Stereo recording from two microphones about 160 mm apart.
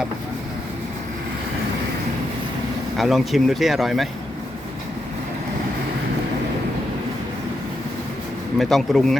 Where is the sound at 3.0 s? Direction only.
Centre (ahead or behind).